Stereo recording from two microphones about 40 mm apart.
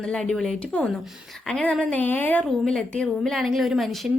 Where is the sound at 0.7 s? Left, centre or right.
Left.